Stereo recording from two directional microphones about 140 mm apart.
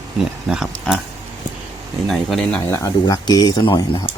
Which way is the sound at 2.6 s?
20° left (ahead or behind).